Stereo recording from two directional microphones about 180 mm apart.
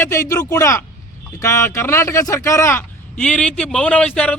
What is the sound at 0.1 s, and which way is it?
Speech, 15° left (ahead or behind).